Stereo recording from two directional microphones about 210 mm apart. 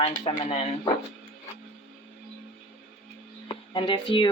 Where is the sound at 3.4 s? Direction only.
25° left (ahead or behind).